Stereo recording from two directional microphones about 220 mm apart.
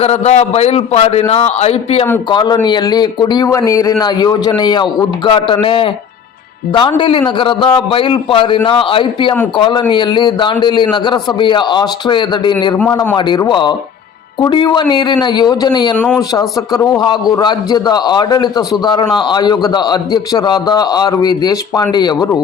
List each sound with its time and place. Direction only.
0.0 s speech: 30° left (ahead or behind)